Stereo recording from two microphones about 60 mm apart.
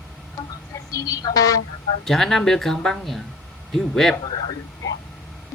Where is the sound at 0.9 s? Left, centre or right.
Left.